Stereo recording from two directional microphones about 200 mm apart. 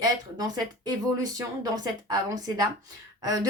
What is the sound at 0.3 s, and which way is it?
Speech, 20° right (ahead or behind).